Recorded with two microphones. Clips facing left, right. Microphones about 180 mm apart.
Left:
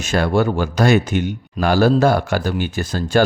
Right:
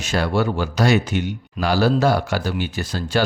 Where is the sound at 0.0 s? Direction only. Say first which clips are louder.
Left 3 dB; 50° left (ahead or behind).